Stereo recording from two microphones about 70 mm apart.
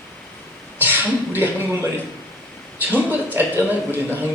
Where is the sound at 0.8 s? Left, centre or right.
Right.